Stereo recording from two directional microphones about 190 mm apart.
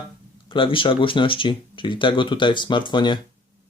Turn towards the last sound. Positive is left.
turn(degrees=25)  # may be behind; listen again after turning